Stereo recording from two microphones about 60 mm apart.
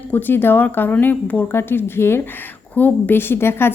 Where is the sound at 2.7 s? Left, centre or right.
Left.